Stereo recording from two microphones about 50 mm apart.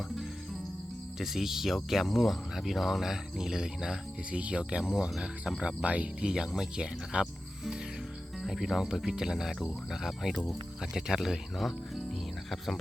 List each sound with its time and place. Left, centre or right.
1.2 s speech: centre
4.3 s speech: right
4.8 s speech: centre
5.8 s speech: right
6.2 s speech: centre
8.4 s speech: centre